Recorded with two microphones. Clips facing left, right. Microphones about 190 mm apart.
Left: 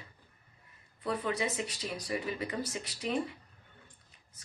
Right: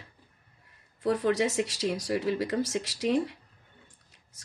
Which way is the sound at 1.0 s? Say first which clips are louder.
Right 8 dB; 75° right (ahead or behind).